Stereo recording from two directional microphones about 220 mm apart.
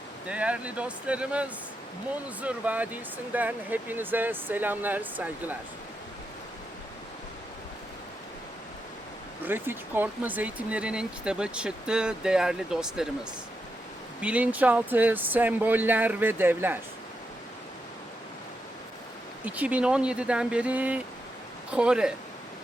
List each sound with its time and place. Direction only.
0.3 s speech: 5° right (ahead or behind)
9.5 s speech: 10° right (ahead or behind)
14.2 s speech: 5° right (ahead or behind)
19.5 s speech: 5° right (ahead or behind)